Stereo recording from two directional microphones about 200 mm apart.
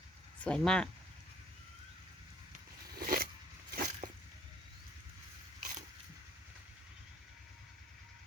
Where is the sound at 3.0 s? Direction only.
50° right (ahead or behind).